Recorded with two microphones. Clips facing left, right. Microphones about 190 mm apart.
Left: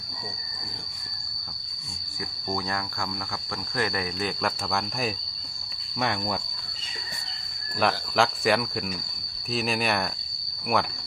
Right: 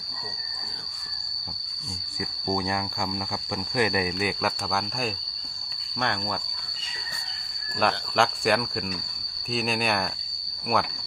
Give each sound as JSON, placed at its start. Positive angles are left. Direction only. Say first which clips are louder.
{"t": 2.5, "sound": "cricket", "louder": "right 3 dB", "side_deg": -15}
{"t": 4.4, "sound": "speech", "louder": "even", "side_deg": -5}
{"t": 7.8, "sound": "speech", "louder": "even", "side_deg": 0}